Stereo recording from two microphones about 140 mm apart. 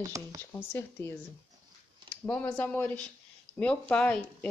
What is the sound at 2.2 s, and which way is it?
A woman's voice, 10° left (ahead or behind).